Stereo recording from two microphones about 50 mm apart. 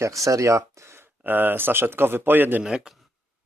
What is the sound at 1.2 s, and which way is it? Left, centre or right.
Speech, right.